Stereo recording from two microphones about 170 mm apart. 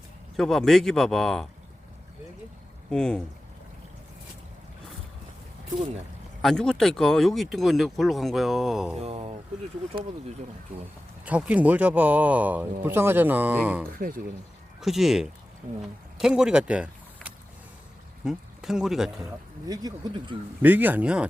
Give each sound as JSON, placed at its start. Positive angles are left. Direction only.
{"t": 0.3, "sound": "speech", "side_deg": 0}
{"t": 2.9, "sound": "speech", "side_deg": 5}
{"t": 6.4, "sound": "speech", "side_deg": 5}
{"t": 9.0, "sound": "speech", "side_deg": -35}
{"t": 11.3, "sound": "speech", "side_deg": -10}
{"t": 18.3, "sound": "speech", "side_deg": 0}
{"t": 19.6, "sound": "speech", "side_deg": -25}
{"t": 20.6, "sound": "speech", "side_deg": -10}